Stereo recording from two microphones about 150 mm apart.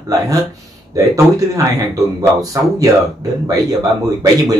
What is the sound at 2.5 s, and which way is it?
Speech, 20° right (ahead or behind).